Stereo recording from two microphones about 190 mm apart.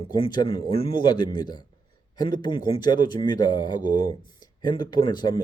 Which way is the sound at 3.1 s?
20° left (ahead or behind).